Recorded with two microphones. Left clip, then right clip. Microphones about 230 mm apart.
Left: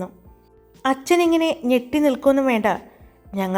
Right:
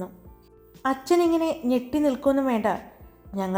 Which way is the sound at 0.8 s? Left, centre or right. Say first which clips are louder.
Left 4 dB; centre.